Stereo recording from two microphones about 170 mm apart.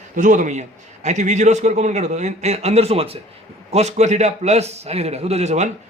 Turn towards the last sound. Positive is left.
turn(degrees=-40)  # may be behind; listen again after turning